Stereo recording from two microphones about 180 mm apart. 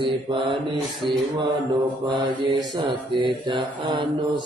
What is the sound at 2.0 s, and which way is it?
Mantra, 25° right (ahead or behind).